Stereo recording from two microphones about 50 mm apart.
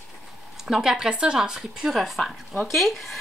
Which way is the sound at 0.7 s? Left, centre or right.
Centre.